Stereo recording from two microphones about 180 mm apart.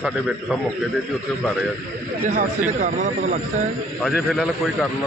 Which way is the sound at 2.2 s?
45° right (ahead or behind).